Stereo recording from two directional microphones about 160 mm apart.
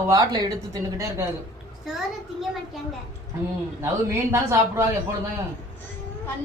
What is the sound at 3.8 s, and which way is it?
A man's voice, 15° right (ahead or behind).